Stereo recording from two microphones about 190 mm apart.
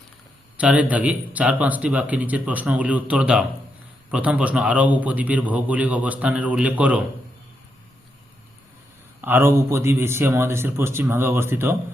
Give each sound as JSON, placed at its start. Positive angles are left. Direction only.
{"t": 0.5, "sound": "speech", "side_deg": -5}
{"t": 9.2, "sound": "speech", "side_deg": -10}